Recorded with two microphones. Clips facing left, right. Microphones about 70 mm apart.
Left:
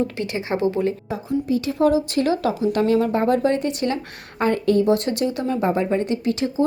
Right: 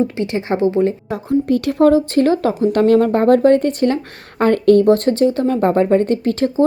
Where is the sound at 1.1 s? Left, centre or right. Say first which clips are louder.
Right 6 dB; right.